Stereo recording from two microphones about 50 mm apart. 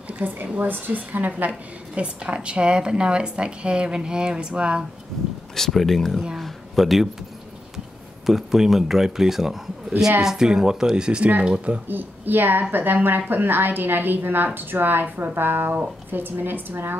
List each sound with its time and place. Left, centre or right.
0.2 s a woman's voice: right
2.0 s speech: right
5.6 s speech: centre
8.3 s speech: centre
11.9 s a woman's voice: right